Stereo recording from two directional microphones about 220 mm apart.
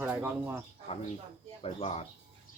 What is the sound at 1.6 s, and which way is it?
Speech, 25° left (ahead or behind).